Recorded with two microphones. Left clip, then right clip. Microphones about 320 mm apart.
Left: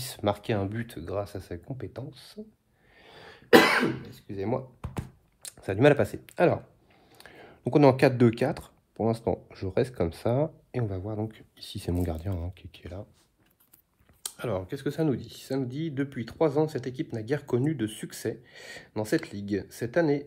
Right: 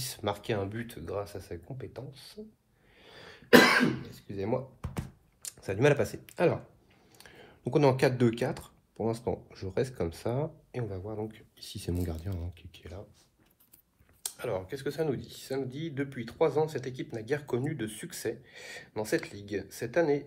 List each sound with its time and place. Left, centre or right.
0.0 s speech: left
3.0 s throat clearing: left
7.1 s speech: left
14.2 s speech: left